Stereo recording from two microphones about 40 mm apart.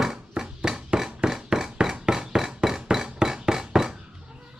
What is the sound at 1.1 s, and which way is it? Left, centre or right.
Hammer, right.